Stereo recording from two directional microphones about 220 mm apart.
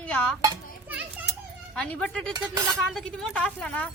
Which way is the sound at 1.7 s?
5° left (ahead or behind).